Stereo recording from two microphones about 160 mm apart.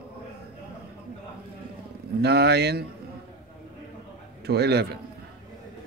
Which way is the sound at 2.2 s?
90° right.